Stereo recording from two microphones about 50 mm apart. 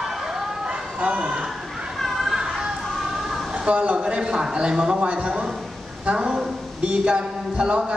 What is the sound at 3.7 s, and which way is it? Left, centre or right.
A man's voice, right.